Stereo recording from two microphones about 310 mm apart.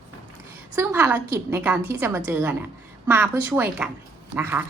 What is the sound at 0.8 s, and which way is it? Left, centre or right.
A woman's voice, centre.